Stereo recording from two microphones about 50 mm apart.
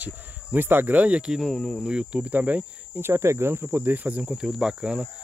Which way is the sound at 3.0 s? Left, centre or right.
Right.